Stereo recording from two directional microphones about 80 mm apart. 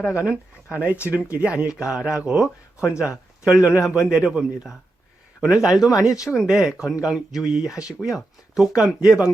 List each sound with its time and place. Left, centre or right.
0.1 s speech: centre